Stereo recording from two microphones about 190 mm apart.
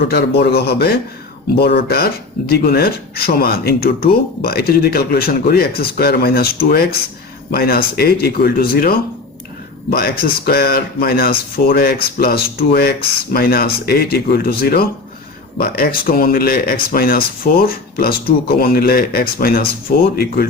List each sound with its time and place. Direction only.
0.1 s a man's voice: 55° left (ahead or behind)